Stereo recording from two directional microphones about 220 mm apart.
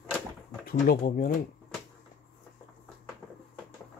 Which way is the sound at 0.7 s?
40° left (ahead or behind).